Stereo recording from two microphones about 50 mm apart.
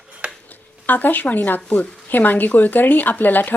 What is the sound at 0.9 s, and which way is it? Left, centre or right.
Speech, left.